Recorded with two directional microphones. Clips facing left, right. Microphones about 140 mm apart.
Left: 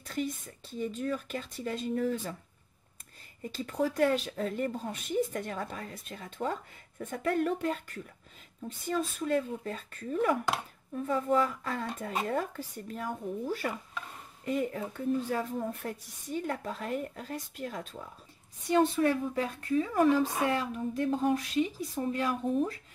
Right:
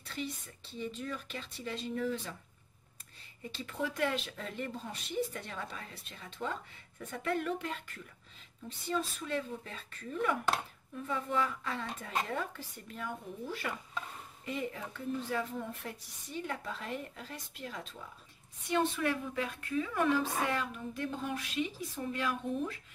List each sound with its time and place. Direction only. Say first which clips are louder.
0.0 s speech: left 6 dB; 45° left (ahead or behind)
3.5 s a woman's voice: left 7 dB; 40° left (ahead or behind)